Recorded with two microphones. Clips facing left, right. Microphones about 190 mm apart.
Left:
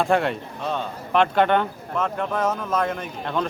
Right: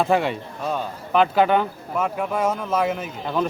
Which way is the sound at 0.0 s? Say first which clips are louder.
Right 1 dB; centre (ahead or behind).